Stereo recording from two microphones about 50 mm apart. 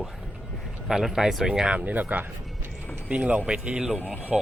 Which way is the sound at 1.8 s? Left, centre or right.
Right.